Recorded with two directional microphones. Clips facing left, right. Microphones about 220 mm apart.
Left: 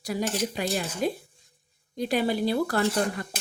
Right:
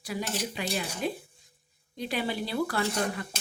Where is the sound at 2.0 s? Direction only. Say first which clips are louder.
Left 6 dB; 45° left (ahead or behind).